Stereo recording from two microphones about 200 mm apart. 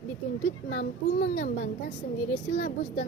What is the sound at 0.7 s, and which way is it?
A woman's voice, 50° left (ahead or behind).